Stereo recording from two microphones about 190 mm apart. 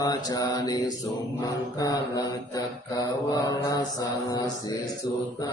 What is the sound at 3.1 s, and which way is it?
Mantra, 20° left (ahead or behind).